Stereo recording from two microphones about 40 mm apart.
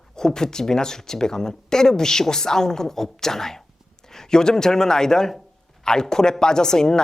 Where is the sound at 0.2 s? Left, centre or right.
Centre.